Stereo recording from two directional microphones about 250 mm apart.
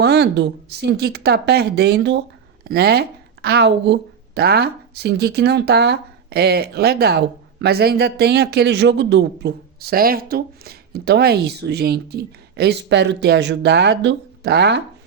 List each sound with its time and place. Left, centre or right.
0.0 s speech: right